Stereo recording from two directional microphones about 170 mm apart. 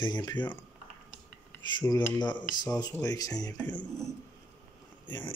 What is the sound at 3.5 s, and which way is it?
Speech, 10° left (ahead or behind).